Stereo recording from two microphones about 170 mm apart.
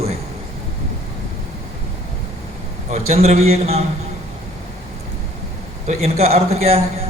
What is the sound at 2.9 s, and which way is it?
Speech, 40° right (ahead or behind).